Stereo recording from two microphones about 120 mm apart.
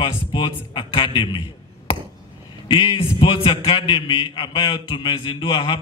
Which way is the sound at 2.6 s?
40° left (ahead or behind).